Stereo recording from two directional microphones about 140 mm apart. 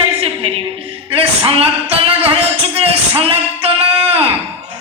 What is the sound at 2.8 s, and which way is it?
Music, 45° right (ahead or behind).